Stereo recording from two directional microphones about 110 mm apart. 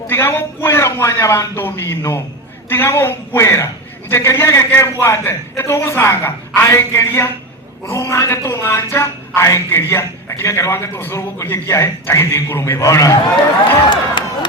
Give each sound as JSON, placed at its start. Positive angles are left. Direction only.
{"t": 0.1, "sound": "speech", "side_deg": 20}
{"t": 14.2, "sound": "crowd", "side_deg": 45}